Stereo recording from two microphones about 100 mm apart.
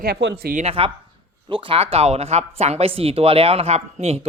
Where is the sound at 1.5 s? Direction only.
60° right (ahead or behind).